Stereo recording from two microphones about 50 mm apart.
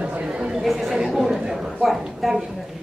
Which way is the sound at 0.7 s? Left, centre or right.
Centre.